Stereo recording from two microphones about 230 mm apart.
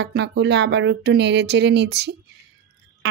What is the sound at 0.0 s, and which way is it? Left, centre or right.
A woman's voice, right.